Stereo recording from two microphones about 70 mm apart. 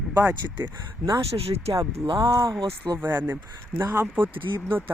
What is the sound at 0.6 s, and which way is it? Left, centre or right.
Speech, right.